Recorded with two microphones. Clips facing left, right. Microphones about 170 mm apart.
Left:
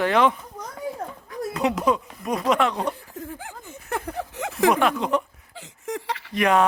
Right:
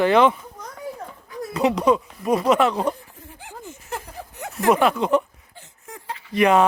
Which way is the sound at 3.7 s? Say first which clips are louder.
Left 6 dB; 65° left (ahead or behind).